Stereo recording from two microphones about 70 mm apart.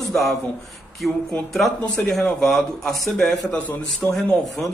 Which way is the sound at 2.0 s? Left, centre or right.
Left.